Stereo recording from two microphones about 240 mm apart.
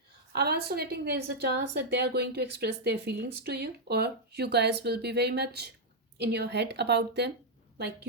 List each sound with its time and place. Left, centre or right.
0.3 s a woman's voice: right